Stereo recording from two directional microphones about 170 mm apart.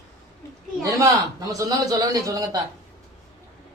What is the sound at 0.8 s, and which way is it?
A man's voice, 20° right (ahead or behind).